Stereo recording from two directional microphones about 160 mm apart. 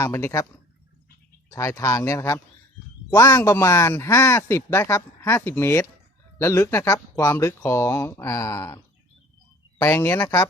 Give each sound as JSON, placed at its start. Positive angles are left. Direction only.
{"t": 0.0, "sound": "speech", "side_deg": 15}
{"t": 1.5, "sound": "speech", "side_deg": 20}